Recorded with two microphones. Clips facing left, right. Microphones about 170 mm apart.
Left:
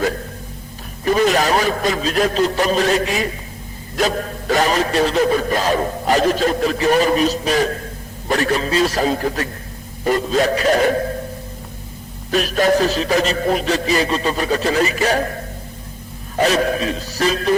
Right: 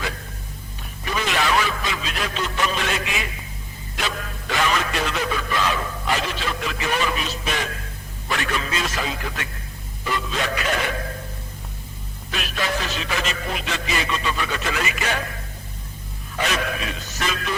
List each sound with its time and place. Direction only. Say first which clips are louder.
1.0 s speech: left 9 dB; 40° left (ahead or behind)
12.3 s speech: left 11 dB; 40° left (ahead or behind)